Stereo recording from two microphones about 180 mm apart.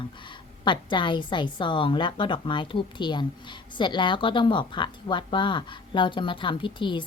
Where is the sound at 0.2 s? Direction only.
25° left (ahead or behind).